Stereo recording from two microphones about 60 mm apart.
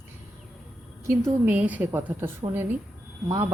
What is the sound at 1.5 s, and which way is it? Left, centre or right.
A woman's voice, right.